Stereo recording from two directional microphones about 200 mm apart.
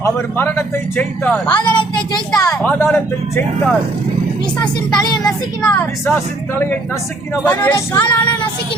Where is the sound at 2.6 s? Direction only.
5° left (ahead or behind).